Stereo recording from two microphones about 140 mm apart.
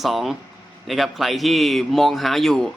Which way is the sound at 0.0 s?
Centre (ahead or behind).